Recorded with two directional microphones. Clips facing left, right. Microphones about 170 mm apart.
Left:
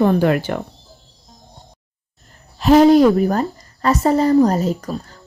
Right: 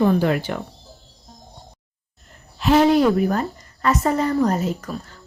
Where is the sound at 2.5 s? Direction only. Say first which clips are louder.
Left 5 dB; 40° left (ahead or behind).